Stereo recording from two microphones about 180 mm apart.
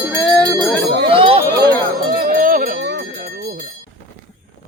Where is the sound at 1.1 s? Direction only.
30° right (ahead or behind).